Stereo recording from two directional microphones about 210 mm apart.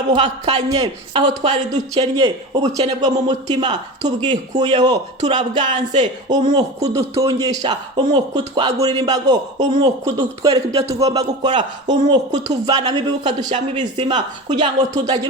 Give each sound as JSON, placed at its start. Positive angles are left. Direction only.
{"t": 0.2, "sound": "a woman's voice", "side_deg": -30}